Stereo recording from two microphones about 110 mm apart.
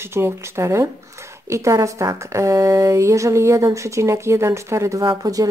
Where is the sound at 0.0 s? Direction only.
20° right (ahead or behind).